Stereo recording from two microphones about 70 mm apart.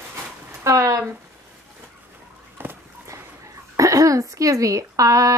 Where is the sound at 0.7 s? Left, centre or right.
Right.